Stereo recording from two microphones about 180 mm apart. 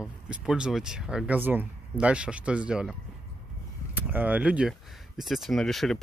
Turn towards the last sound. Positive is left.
turn(degrees=0)  # may be behind; listen again after turning